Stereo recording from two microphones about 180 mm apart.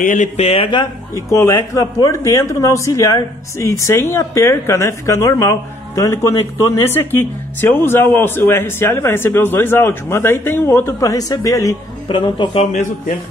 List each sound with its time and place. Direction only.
0.0 s a man's voice: 45° left (ahead or behind)